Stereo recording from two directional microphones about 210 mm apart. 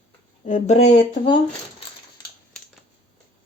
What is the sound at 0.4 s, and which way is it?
Speech, 35° left (ahead or behind).